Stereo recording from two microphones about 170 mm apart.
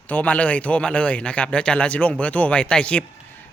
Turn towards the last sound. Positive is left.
turn(degrees=5)  # may be behind; listen again after turning